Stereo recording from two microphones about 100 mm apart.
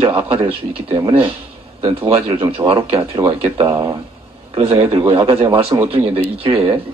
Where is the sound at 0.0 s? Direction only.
70° right (ahead or behind).